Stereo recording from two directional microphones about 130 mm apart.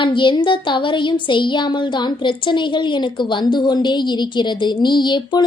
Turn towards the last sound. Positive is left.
turn(degrees=35)  # may be behind; listen again after turning